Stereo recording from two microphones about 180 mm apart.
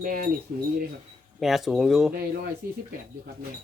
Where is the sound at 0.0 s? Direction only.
55° right (ahead or behind).